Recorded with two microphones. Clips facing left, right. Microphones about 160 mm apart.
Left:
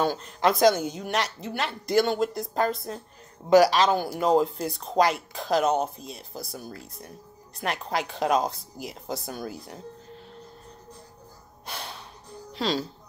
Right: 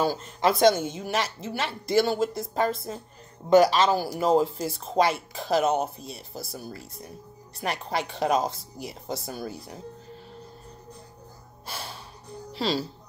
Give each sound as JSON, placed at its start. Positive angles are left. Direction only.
{"t": 0.0, "sound": "speech", "side_deg": 0}
{"t": 11.6, "sound": "gasp", "side_deg": 0}
{"t": 12.5, "sound": "speech", "side_deg": -5}